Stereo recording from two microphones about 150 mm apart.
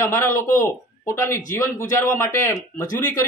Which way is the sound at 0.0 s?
20° left (ahead or behind).